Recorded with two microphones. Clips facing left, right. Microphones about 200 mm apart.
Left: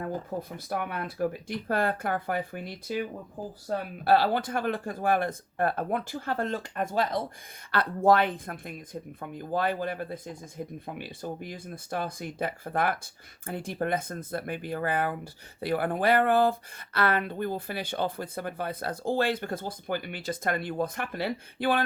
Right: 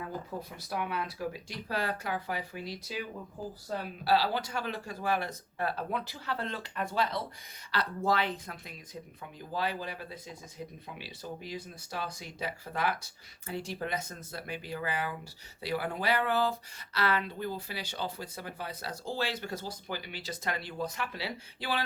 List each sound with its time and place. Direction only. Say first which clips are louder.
0.5 s speech: right 2 dB; 50° left (ahead or behind)